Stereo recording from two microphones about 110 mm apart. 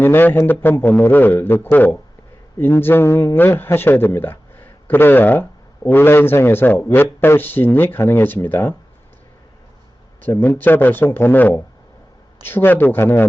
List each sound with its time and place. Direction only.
0.0 s a man's voice: 20° left (ahead or behind)
10.2 s a man's voice: 20° left (ahead or behind)